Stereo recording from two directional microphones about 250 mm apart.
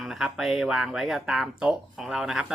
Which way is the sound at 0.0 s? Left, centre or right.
Centre.